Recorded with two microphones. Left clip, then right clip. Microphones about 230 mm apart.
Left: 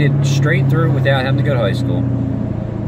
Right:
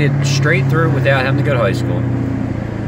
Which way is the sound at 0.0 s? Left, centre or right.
Centre.